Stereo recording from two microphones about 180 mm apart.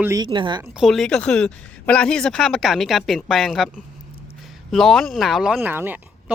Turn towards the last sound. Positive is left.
turn(degrees=-10)  # may be behind; listen again after turning